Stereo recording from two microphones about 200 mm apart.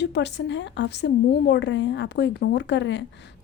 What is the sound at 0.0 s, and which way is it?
A woman's voice, 60° left (ahead or behind).